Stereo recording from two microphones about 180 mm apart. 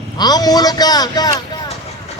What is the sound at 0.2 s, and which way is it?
A man's voice, 20° left (ahead or behind).